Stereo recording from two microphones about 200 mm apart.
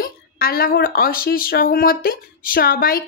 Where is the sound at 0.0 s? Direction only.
50° left (ahead or behind).